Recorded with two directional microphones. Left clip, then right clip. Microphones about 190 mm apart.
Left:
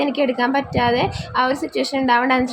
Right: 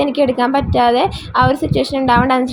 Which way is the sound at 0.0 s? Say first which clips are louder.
Right 4 dB; 15° right (ahead or behind).